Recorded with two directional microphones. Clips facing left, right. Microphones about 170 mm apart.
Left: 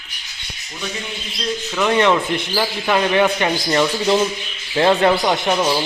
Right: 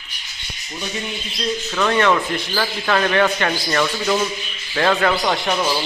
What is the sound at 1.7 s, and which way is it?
Speech, 10° left (ahead or behind).